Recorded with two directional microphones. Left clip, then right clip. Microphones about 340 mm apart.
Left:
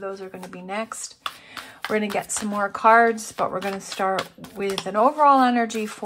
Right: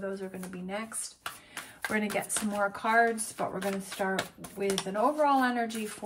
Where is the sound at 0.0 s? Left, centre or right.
Centre.